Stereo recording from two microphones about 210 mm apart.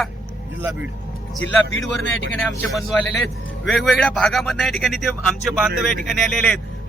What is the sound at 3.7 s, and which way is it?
Speech, centre (ahead or behind).